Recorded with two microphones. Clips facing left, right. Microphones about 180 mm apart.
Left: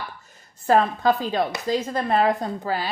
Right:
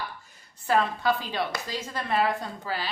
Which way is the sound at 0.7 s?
45° left (ahead or behind).